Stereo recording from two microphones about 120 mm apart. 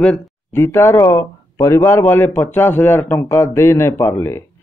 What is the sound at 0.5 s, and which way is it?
Speech, 20° left (ahead or behind).